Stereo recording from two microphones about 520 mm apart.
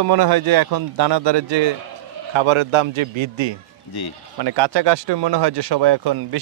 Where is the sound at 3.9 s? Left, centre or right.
Left.